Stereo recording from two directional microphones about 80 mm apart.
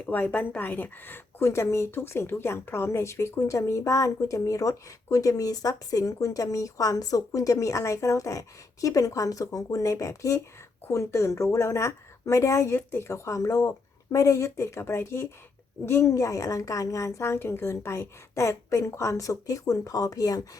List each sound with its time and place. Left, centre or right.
0.0 s a woman's voice: centre; by 20.5 s left